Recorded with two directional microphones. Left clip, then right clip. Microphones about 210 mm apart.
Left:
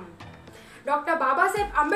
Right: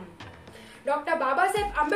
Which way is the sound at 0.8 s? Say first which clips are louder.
Left 2 dB; 5° right (ahead or behind).